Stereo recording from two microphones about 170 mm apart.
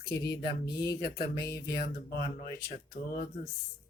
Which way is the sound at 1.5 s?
70° left (ahead or behind).